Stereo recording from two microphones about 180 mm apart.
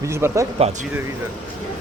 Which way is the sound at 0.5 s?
35° right (ahead or behind).